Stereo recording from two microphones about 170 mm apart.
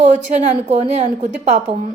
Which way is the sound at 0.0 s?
45° right (ahead or behind).